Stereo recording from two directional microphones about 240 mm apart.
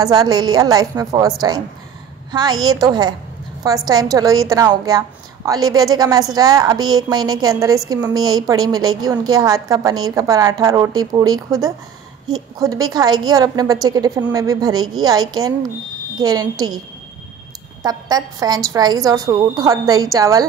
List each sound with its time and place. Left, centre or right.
0.0 s a woman's voice: centre
17.8 s a woman's voice: centre